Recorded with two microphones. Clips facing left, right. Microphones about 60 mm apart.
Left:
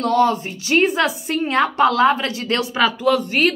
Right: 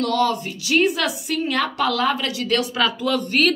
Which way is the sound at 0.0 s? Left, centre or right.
Left.